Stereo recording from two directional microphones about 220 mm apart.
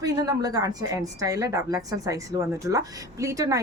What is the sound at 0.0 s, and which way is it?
A woman's voice, 15° right (ahead or behind).